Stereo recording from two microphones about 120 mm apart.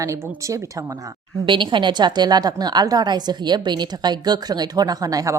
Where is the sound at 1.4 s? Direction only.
40° right (ahead or behind).